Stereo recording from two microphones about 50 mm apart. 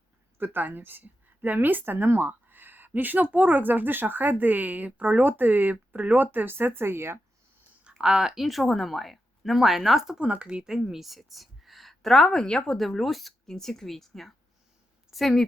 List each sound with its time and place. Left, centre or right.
0.3 s a woman's voice: right
7.9 s speech: centre
8.4 s a woman's voice: centre
10.2 s a woman's voice: right; by 15.4 s centre